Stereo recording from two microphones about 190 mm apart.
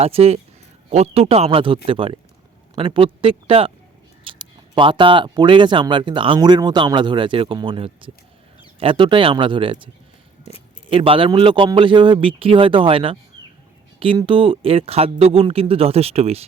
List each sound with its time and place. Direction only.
0.0 s a man's voice: 30° right (ahead or behind)